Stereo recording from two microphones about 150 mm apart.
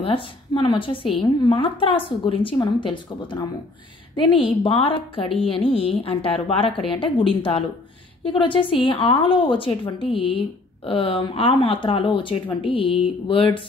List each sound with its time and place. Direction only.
0.0 s a woman's voice: 35° left (ahead or behind)